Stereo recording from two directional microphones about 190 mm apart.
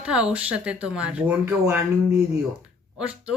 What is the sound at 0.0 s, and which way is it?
Speech, 5° right (ahead or behind).